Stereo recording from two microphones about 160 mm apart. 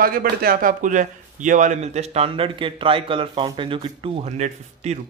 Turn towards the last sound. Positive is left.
turn(degrees=-45)  # may be behind; listen again after turning